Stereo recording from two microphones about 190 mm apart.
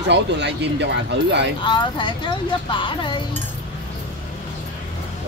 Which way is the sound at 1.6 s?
25° left (ahead or behind).